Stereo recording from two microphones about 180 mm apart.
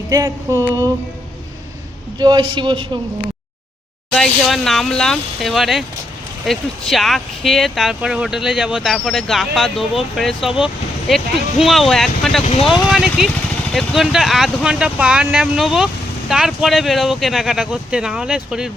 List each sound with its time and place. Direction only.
0.1 s a man's voice: 20° right (ahead or behind)
2.1 s a man's voice: 25° right (ahead or behind)
4.1 s speech: centre (ahead or behind)